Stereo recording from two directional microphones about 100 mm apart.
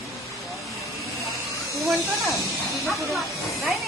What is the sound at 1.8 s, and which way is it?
Speech, centre (ahead or behind).